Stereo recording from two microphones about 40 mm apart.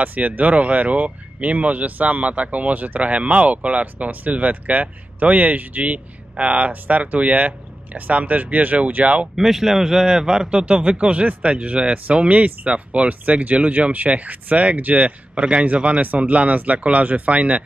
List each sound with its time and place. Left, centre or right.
0.0 s speech: right
9.4 s a man's voice: centre
10.6 s speech: right